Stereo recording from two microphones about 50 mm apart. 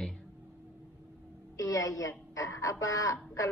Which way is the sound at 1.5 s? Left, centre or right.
Left.